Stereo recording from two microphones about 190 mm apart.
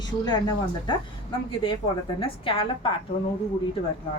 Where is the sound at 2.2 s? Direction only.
30° left (ahead or behind).